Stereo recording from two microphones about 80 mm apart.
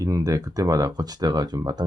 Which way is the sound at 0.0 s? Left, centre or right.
Right.